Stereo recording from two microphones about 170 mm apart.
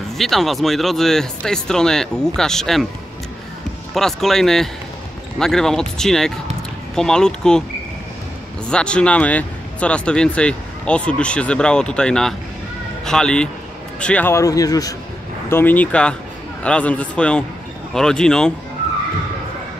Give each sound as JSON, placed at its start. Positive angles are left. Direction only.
{"t": 0.2, "sound": "speech", "side_deg": 0}
{"t": 3.9, "sound": "speech", "side_deg": 0}
{"t": 8.6, "sound": "speech", "side_deg": 5}
{"t": 15.5, "sound": "a man's voice", "side_deg": 10}